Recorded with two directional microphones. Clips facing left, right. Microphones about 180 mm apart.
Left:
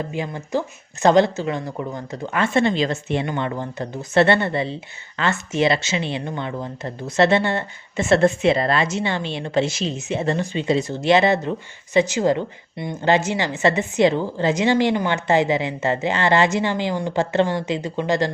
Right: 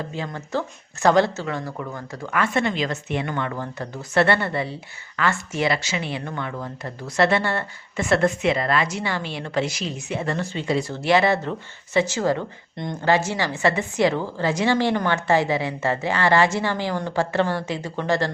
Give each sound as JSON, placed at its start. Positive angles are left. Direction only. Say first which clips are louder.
{"t": 0.1, "sound": "speech", "louder": "left 3 dB", "side_deg": 15}
{"t": 12.7, "sound": "speech", "louder": "left 1 dB", "side_deg": 10}
{"t": 13.0, "sound": "speech", "louder": "left 2 dB", "side_deg": 20}